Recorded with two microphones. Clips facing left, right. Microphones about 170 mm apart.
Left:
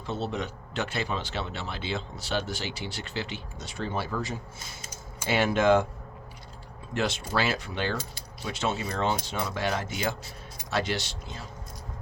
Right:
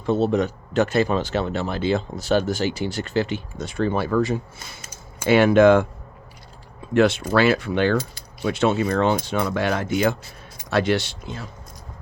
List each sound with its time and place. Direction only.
0.0 s speech: 50° right (ahead or behind)
6.9 s speech: 60° right (ahead or behind)